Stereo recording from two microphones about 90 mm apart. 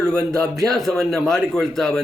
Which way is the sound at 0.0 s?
25° right (ahead or behind).